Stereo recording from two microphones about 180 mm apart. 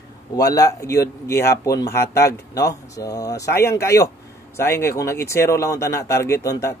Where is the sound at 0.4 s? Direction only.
20° left (ahead or behind).